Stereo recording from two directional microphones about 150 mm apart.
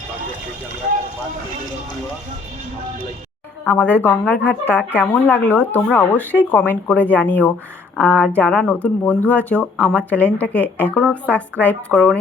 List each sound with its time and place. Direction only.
3.6 s speech: 10° left (ahead or behind)